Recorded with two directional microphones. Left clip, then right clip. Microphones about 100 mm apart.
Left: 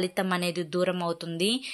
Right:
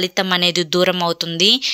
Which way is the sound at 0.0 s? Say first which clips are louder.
Right 11 dB; 15° right (ahead or behind).